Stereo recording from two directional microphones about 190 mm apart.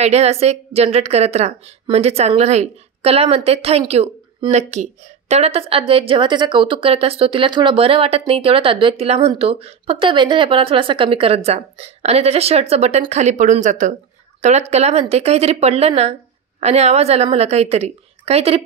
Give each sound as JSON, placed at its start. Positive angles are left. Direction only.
{"t": 0.0, "sound": "a woman's voice", "side_deg": -35}